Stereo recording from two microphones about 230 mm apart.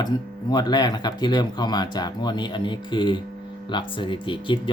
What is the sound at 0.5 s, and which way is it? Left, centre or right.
Speech, centre.